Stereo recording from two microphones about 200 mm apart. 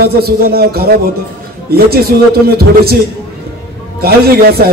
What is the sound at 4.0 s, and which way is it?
Speech, 50° right (ahead or behind).